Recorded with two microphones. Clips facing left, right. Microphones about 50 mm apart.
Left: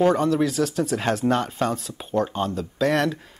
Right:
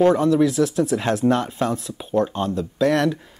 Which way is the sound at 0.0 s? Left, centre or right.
Centre.